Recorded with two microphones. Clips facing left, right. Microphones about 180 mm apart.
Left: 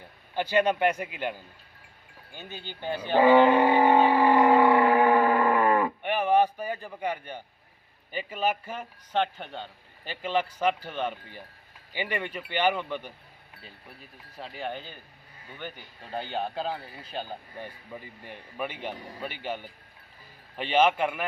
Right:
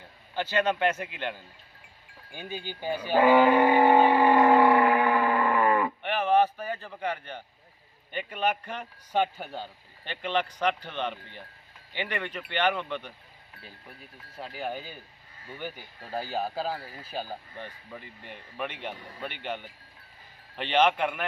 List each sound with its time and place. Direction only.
0.3 s speech: 10° left (ahead or behind)
2.3 s speech: 10° right (ahead or behind)
3.2 s speech: 25° left (ahead or behind)
3.8 s speech: 10° right (ahead or behind)
4.4 s civil defense siren: 15° left (ahead or behind)
4.9 s a sound: 35° left (ahead or behind)
6.0 s a sound: 15° left (ahead or behind)
8.1 s speech: 5° left (ahead or behind)
9.1 s speech: 5° right (ahead or behind)
10.0 s speech: 5° left (ahead or behind)
17.6 s speech: 10° left (ahead or behind)